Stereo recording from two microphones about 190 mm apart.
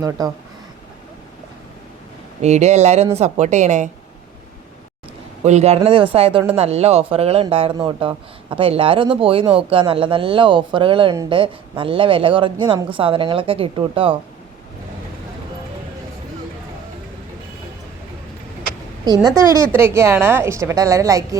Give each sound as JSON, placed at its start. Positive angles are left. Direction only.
{"t": 2.4, "sound": "a woman's voice", "side_deg": -35}
{"t": 5.4, "sound": "a woman's voice", "side_deg": -35}
{"t": 19.7, "sound": "a woman's voice", "side_deg": -15}